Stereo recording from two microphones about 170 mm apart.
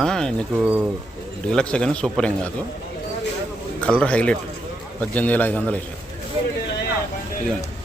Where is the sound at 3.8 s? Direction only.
5° left (ahead or behind).